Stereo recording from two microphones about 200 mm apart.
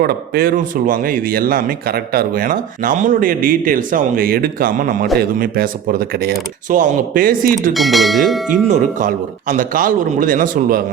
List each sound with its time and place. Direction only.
0.0 s speech: 50° right (ahead or behind)
7.7 s bell: centre (ahead or behind)
8.6 s speech: 40° right (ahead or behind)